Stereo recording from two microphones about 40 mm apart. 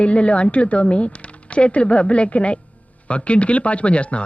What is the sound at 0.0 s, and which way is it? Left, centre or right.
Speech, left.